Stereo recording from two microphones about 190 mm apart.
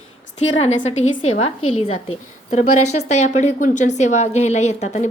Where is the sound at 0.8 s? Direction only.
35° left (ahead or behind).